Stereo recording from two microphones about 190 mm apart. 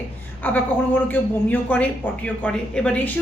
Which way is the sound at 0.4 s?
10° left (ahead or behind).